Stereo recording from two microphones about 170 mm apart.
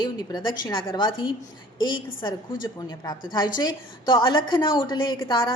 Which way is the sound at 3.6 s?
25° left (ahead or behind).